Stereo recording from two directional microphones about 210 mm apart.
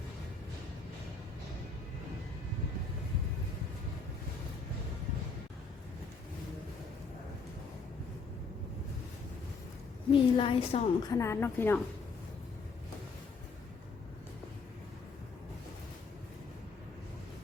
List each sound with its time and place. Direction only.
10.1 s a woman's voice: 25° left (ahead or behind)
11.1 s a woman's voice: 15° left (ahead or behind)